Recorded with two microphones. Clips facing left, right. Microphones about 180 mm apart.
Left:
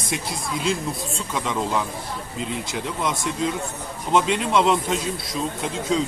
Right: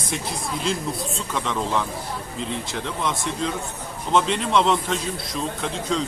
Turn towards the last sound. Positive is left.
turn(degrees=0)  # may be behind; listen again after turning